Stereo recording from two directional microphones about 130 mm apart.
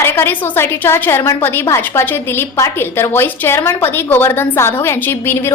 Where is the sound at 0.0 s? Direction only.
15° left (ahead or behind).